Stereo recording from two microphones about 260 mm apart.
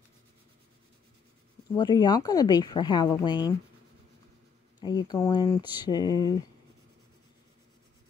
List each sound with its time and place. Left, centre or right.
1.8 s speech: centre
4.7 s speech: centre